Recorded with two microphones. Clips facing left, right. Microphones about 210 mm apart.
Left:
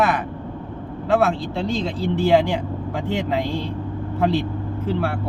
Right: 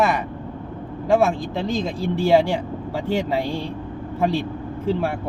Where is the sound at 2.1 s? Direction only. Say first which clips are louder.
Even; 10° right (ahead or behind).